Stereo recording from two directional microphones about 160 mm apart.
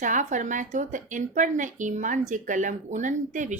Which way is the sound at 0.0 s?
50° right (ahead or behind).